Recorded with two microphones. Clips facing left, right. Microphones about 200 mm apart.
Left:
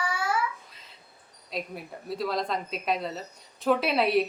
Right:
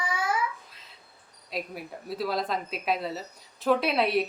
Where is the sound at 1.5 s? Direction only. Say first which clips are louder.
Even; centre (ahead or behind).